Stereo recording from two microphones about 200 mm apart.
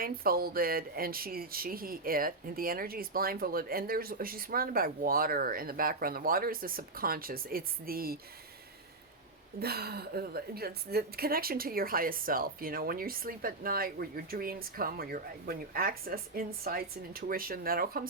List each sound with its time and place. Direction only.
0.0 s a woman's voice: 50° right (ahead or behind)
9.6 s a woman's voice: 50° right (ahead or behind)